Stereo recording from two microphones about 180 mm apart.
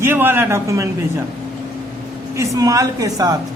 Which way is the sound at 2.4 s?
20° right (ahead or behind).